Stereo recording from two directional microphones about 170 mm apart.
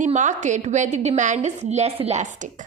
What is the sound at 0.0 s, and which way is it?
A woman's voice, 45° right (ahead or behind).